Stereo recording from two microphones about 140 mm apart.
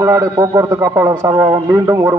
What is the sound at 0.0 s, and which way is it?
A man's voice, 25° right (ahead or behind).